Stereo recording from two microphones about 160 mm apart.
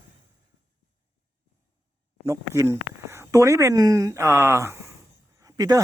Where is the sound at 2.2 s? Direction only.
20° right (ahead or behind).